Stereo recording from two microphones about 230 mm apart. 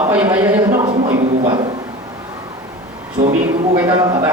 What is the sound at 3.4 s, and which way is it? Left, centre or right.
Speech, centre.